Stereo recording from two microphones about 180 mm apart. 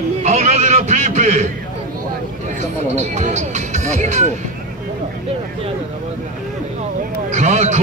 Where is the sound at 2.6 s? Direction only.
40° right (ahead or behind).